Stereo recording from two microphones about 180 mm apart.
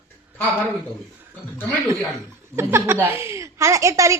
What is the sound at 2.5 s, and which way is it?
A woman's voice, 15° right (ahead or behind).